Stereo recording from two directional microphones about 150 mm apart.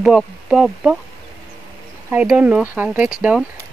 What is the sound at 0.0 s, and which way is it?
Speech, 5° right (ahead or behind).